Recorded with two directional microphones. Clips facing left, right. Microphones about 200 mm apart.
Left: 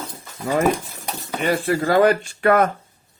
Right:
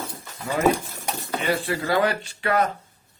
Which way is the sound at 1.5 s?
45° left (ahead or behind).